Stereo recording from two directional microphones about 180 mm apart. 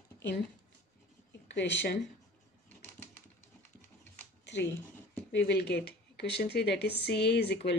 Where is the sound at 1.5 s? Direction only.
80° left.